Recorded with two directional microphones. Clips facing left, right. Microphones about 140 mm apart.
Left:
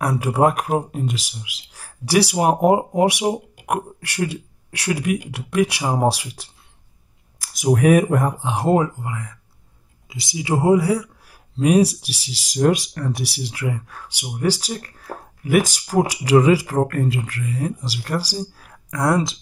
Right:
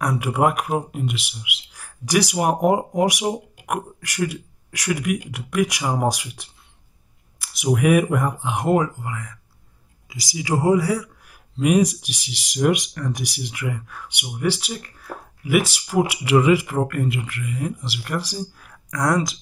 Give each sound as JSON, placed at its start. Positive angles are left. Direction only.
{"t": 0.0, "sound": "speech", "side_deg": 35}
{"t": 11.5, "sound": "speech", "side_deg": 35}